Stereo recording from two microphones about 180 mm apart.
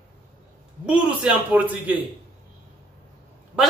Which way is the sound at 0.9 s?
5° right (ahead or behind).